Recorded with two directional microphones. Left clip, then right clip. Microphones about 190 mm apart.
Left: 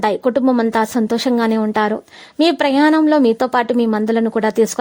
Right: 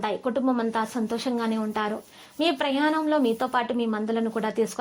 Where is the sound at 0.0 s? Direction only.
45° left (ahead or behind).